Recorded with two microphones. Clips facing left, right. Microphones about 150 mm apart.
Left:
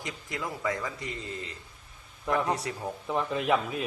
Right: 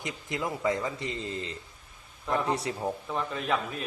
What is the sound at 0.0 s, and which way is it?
Speech, 20° right (ahead or behind).